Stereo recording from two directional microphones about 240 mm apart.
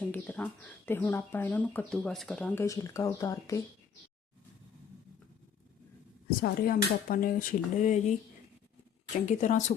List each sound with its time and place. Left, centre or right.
0.0 s speech: centre
6.4 s speech: left
9.1 s speech: left